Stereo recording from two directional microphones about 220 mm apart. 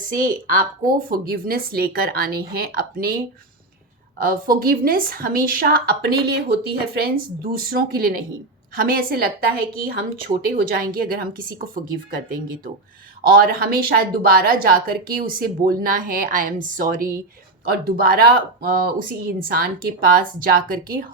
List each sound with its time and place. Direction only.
0.0 s a woman's voice: 40° right (ahead or behind)
4.2 s a woman's voice: 40° right (ahead or behind)
10.5 s a woman's voice: 40° right (ahead or behind)